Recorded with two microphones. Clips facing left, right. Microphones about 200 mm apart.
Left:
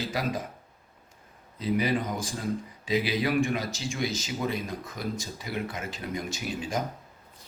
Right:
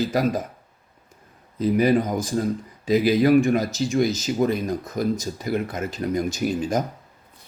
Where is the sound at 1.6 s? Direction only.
45° right (ahead or behind).